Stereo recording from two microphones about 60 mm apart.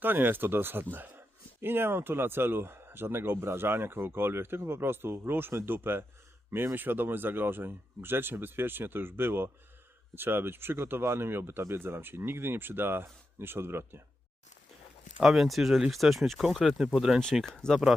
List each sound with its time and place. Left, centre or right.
0.0 s speech: right
15.2 s speech: centre
17.4 s speech: centre